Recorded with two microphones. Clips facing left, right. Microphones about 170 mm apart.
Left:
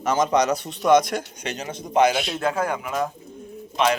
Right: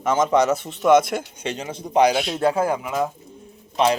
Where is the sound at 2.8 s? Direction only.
10° right (ahead or behind).